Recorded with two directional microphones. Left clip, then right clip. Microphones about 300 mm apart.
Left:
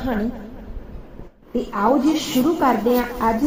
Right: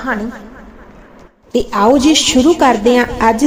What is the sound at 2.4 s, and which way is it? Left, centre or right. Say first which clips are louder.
Speech: right 6 dB; right.